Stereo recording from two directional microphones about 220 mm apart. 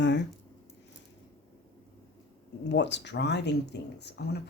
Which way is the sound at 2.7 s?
50° left (ahead or behind).